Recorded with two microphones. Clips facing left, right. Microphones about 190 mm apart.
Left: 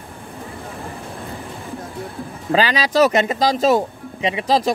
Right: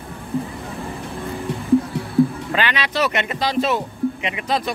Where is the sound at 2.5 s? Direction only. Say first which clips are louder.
Left 5 dB; 35° left (ahead or behind).